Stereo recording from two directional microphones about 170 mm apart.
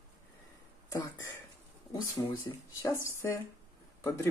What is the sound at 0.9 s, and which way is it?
Speech, 20° left (ahead or behind).